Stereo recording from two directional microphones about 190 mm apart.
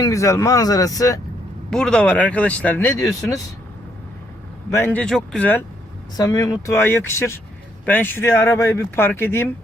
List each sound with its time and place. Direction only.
0.0 s speech: 15° left (ahead or behind)
1.7 s speech: 5° left (ahead or behind)
4.7 s speech: 10° left (ahead or behind)
6.1 s speech: 20° left (ahead or behind)